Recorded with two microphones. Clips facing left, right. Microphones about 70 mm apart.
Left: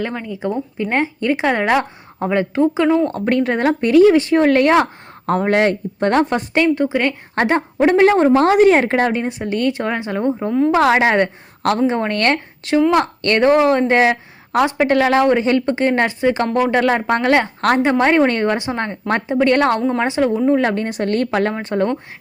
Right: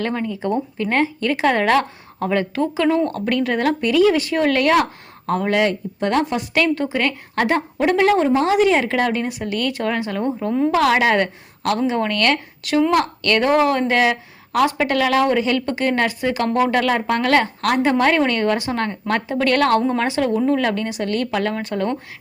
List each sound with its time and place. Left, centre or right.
0.0 s speech: centre
0.8 s a woman's voice: centre
3.1 s a woman's voice: left
6.5 s a woman's voice: left